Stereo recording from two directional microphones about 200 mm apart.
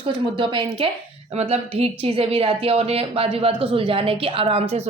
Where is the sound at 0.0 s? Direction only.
25° right (ahead or behind).